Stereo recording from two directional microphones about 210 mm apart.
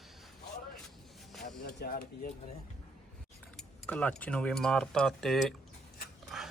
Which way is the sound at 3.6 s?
5° left (ahead or behind).